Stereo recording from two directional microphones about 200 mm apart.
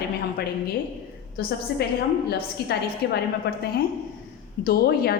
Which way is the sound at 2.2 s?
55° left (ahead or behind).